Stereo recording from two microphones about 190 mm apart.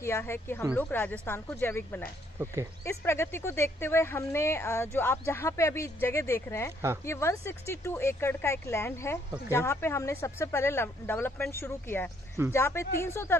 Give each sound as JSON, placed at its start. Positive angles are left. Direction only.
{"t": 0.0, "sound": "speech", "side_deg": 15}